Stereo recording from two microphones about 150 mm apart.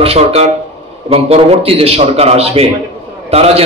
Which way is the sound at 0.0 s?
45° right (ahead or behind).